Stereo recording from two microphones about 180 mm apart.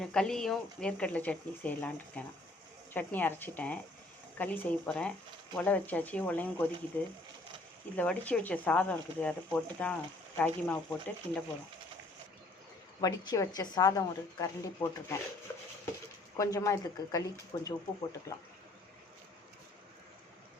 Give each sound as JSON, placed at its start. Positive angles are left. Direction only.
{"t": 0.0, "sound": "speech", "side_deg": 5}
{"t": 13.0, "sound": "speech", "side_deg": 20}
{"t": 16.4, "sound": "speech", "side_deg": 20}